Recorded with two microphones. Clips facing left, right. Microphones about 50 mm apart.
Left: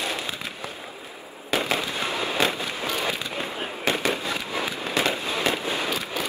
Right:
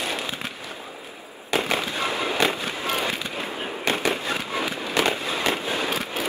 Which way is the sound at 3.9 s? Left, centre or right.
Right.